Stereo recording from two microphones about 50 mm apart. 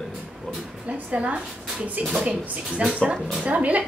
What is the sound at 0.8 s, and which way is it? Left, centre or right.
Speech, right.